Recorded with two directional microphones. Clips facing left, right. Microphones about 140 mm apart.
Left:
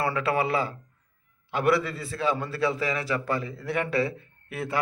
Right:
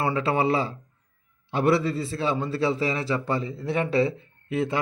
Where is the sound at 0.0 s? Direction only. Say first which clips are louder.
Right 2 dB; 25° right (ahead or behind).